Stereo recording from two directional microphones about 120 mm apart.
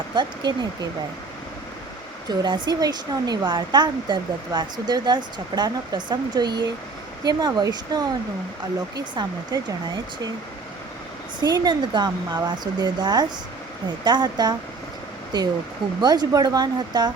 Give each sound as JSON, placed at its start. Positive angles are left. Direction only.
{"t": 0.1, "sound": "speech", "side_deg": -40}
{"t": 2.4, "sound": "speech", "side_deg": -35}
{"t": 11.3, "sound": "speech", "side_deg": -35}